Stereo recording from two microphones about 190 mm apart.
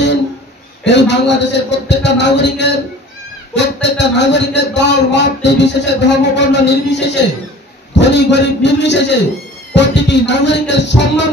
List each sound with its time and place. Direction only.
0.8 s a man's voice: 65° left (ahead or behind)